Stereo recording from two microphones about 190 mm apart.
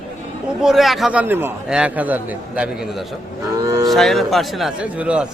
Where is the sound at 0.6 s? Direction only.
Centre (ahead or behind).